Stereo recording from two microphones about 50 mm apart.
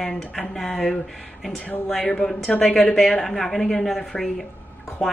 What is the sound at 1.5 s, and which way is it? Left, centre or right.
Speech, left.